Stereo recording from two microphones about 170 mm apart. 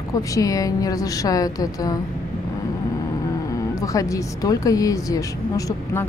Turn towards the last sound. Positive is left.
turn(degrees=20)  # may be behind; listen again after turning